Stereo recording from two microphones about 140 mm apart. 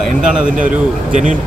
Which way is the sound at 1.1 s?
65° right (ahead or behind).